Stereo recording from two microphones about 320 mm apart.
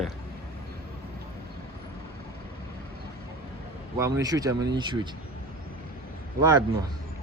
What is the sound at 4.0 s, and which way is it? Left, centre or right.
Speech, centre.